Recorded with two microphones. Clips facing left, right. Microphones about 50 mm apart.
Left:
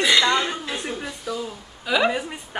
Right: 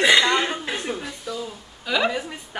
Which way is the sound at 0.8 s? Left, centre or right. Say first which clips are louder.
Even; centre.